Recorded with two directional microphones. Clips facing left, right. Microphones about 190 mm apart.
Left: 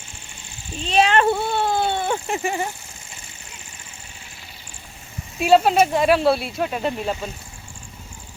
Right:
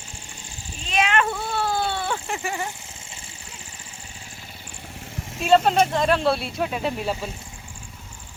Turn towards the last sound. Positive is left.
turn(degrees=-5)  # may be behind; listen again after turning